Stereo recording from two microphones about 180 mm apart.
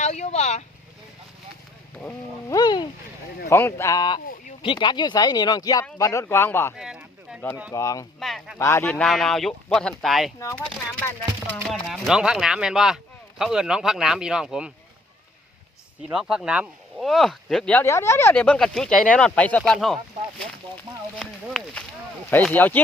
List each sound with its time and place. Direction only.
0.0 s vehicle: 40° left (ahead or behind)
2.0 s a sound: 10° left (ahead or behind)
2.6 s a sound: 25° left (ahead or behind)
3.5 s speech: 15° left (ahead or behind)
6.7 s a sound: 5° right (ahead or behind)
7.7 s speech: 20° left (ahead or behind)
8.2 s speech: centre (ahead or behind)
8.5 s speech: 15° left (ahead or behind)
10.4 s speech: 10° left (ahead or behind)
16.0 s speech: 5° right (ahead or behind)
21.2 s speech: 5° left (ahead or behind)